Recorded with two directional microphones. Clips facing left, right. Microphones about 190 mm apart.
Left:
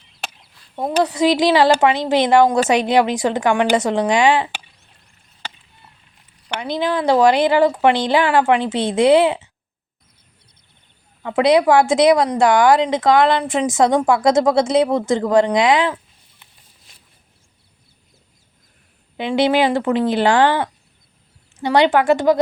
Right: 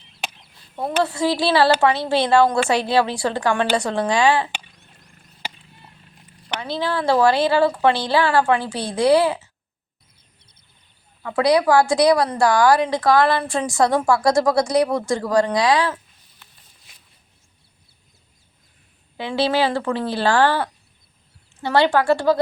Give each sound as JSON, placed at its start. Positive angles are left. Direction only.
{"t": 0.2, "sound": "a sound", "side_deg": 0}
{"t": 1.0, "sound": "speech", "side_deg": 15}
{"t": 6.6, "sound": "speech", "side_deg": 15}
{"t": 11.2, "sound": "a woman's voice", "side_deg": 20}
{"t": 19.1, "sound": "speech", "side_deg": 20}